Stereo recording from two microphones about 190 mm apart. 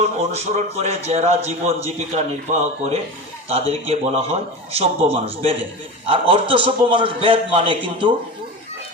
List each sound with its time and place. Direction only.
0.0 s a man's voice: 35° right (ahead or behind)